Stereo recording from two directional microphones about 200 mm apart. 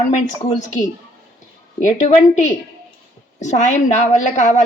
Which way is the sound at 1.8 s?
35° left (ahead or behind).